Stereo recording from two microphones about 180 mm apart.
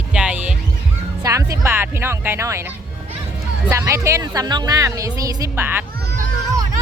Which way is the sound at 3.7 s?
15° right (ahead or behind).